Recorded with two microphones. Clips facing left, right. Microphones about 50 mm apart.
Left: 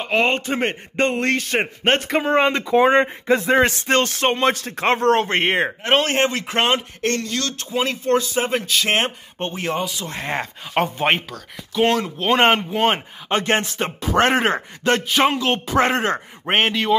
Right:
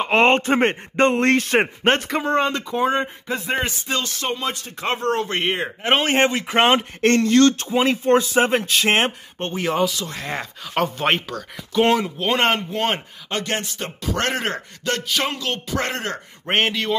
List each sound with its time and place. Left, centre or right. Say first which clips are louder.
0.1 s a man's voice: right 3 dB; right
2.7 s speech: left 6 dB; left
5.8 s speech: right 4 dB; centre
7.0 s a man's voice: right 8 dB; right
7.6 s speech: right 3 dB; right
9.6 s speech: right 4 dB; centre
10.0 s speech: left 3 dB; left
11.0 s speech: left 1 dB; centre
11.2 s speech: right 4 dB; centre
13.3 s speech: left 5 dB; left
16.4 s speech: left 2 dB; centre